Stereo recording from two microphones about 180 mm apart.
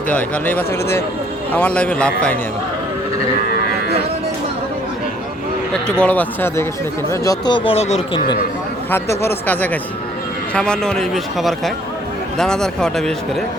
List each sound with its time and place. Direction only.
0.1 s speech: 10° left (ahead or behind)
6.0 s speech: 10° left (ahead or behind)
7.1 s speech: 20° left (ahead or behind); by 8.2 s 35° left (ahead or behind)
8.9 s speech: 10° left (ahead or behind)